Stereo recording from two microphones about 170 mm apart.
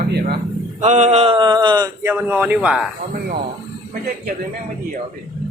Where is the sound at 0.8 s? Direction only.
40° right (ahead or behind); by 1.8 s 25° right (ahead or behind).